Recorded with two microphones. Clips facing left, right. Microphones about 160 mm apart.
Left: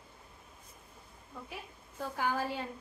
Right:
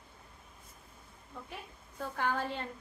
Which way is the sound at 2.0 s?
5° left (ahead or behind).